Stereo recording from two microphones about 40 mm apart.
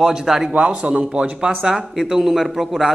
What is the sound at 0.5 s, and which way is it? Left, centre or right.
A man's voice, right.